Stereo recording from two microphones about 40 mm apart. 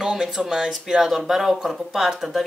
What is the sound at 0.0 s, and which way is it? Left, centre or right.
Speech, centre.